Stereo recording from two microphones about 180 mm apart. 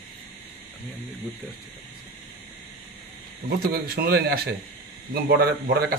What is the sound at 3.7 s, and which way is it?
Speech, 60° right (ahead or behind).